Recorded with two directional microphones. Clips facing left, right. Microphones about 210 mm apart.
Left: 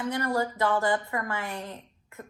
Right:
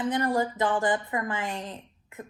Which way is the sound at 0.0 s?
20° right (ahead or behind).